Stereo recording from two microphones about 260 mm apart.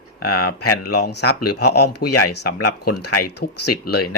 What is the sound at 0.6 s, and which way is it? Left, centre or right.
Speech, left.